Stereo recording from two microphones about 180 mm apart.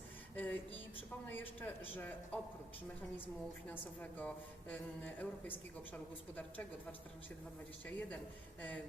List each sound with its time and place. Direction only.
0.3 s a sound: 10° left (ahead or behind)
1.3 s a woman's voice: 10° left (ahead or behind)
3.7 s a woman's voice: 10° left (ahead or behind)
7.9 s a woman's voice: 10° left (ahead or behind)